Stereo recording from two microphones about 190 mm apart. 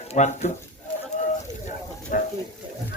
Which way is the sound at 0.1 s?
40° left (ahead or behind).